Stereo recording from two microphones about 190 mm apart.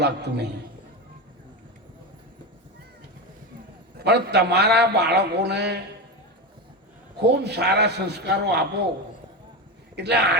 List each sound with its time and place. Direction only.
0.0 s a man's voice: 60° right (ahead or behind)
3.9 s a man's voice: 60° right (ahead or behind)
7.2 s a man's voice: 60° right (ahead or behind)
9.9 s speech: 60° right (ahead or behind)